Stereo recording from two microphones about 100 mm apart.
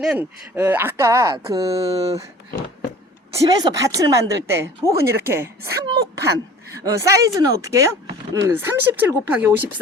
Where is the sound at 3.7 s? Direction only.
35° right (ahead or behind).